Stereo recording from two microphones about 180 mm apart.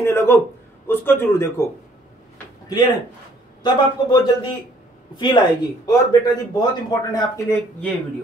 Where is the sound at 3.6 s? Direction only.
25° left (ahead or behind).